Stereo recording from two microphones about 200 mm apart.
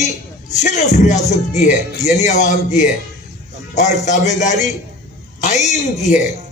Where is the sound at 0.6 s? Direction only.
35° left (ahead or behind).